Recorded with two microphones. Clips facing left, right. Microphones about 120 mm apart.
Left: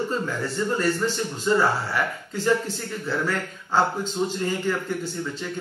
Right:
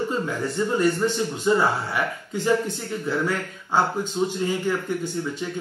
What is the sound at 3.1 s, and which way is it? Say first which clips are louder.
A man's voice: right 1 dB; 15° right (ahead or behind).